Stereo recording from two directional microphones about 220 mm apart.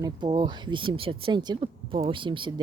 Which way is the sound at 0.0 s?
20° right (ahead or behind).